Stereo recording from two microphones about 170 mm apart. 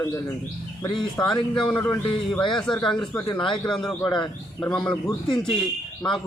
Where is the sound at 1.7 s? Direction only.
25° left (ahead or behind).